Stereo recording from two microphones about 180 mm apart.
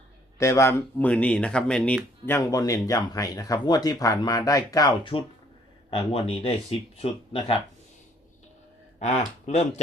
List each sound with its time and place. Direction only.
0.3 s speech: 15° left (ahead or behind)
9.0 s speech: 40° left (ahead or behind)